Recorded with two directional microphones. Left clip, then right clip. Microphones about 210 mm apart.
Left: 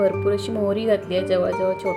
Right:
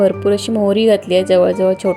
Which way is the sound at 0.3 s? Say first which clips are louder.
Right 7 dB; 30° right (ahead or behind).